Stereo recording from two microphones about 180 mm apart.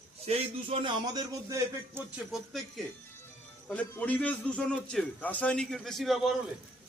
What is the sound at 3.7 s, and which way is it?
A man's voice, 5° left (ahead or behind).